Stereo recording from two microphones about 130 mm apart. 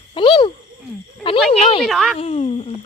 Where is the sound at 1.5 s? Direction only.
50° left (ahead or behind).